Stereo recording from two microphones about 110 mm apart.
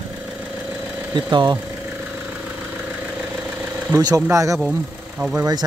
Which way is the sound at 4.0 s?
35° right (ahead or behind).